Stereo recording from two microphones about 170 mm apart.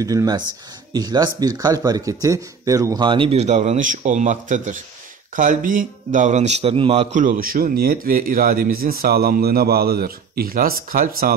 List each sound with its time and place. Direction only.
0.0 s a man's voice: 20° right (ahead or behind); by 11.3 s 55° right (ahead or behind)